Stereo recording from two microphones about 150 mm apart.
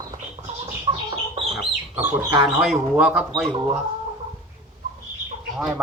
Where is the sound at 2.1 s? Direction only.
20° right (ahead or behind).